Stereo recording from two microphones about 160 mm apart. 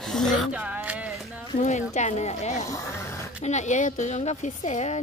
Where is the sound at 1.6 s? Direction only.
45° left (ahead or behind).